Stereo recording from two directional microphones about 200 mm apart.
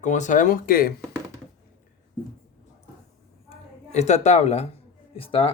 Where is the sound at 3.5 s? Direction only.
35° left (ahead or behind).